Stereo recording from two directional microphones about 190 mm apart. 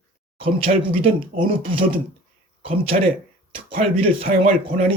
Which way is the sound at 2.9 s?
45° right (ahead or behind).